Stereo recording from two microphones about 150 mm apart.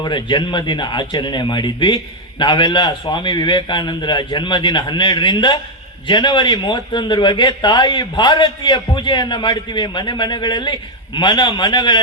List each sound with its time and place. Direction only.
0.0 s a man's voice: 30° left (ahead or behind)